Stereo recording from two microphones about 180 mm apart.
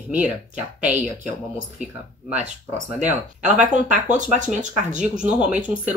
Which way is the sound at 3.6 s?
45° right (ahead or behind).